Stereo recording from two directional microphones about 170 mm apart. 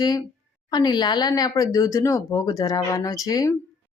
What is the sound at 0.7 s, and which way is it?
A woman's voice, 25° left (ahead or behind).